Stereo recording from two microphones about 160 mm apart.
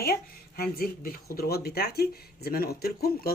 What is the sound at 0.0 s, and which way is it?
Speech, 75° left (ahead or behind).